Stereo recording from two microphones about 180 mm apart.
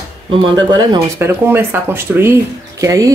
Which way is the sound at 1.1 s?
15° right (ahead or behind).